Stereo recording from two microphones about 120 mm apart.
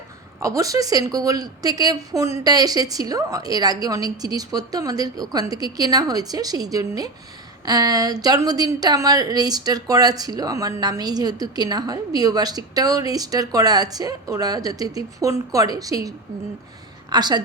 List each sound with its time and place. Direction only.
0.3 s speech: 30° right (ahead or behind)